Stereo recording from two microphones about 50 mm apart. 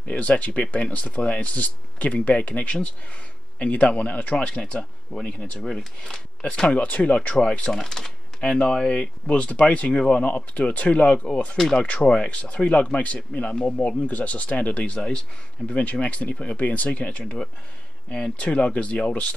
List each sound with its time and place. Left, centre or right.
0.0 s speech: left
7.7 s speech: centre
8.4 s speech: left
17.2 s speech: centre